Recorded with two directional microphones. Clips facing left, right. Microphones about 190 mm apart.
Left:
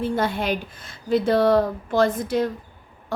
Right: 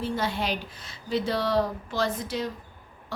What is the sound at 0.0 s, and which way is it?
A woman's voice, 50° left (ahead or behind).